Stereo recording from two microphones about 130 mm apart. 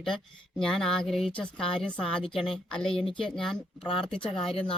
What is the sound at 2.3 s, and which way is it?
Speech, 45° left (ahead or behind).